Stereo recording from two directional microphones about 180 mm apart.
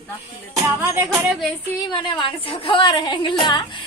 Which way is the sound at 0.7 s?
15° right (ahead or behind).